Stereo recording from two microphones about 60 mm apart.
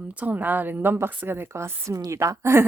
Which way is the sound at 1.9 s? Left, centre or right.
Right.